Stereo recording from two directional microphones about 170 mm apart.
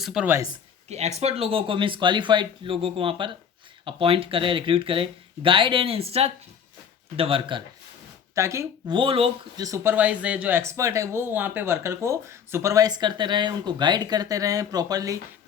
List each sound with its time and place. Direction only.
0.0 s a woman's voice: 5° right (ahead or behind)
0.9 s speech: 40° right (ahead or behind)
8.4 s speech: 15° right (ahead or behind)
9.0 s speech: 35° right (ahead or behind)
9.6 s speech: 15° right (ahead or behind)